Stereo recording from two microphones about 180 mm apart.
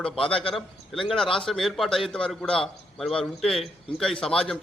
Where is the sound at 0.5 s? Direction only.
Centre (ahead or behind).